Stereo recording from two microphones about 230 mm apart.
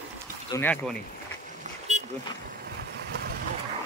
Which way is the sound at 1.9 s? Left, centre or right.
Right.